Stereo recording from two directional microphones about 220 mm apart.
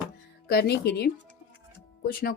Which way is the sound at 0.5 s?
45° left (ahead or behind).